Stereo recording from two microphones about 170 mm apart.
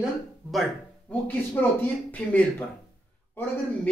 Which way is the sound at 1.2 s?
10° left (ahead or behind).